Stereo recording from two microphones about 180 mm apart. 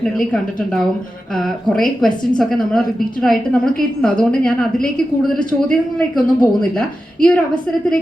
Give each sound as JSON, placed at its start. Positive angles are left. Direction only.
{"t": 0.0, "sound": "a woman's voice", "side_deg": 5}